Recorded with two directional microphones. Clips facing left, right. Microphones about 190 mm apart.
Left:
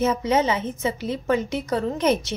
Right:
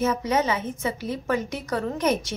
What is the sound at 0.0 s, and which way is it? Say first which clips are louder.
A woman's voice: left 2 dB; 25° left (ahead or behind).